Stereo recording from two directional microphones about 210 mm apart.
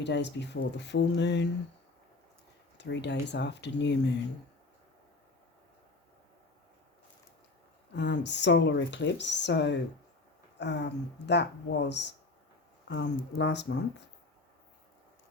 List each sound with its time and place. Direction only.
0.0 s speech: 55° left (ahead or behind)
2.7 s speech: 55° left (ahead or behind)
7.9 s speech: 55° left (ahead or behind)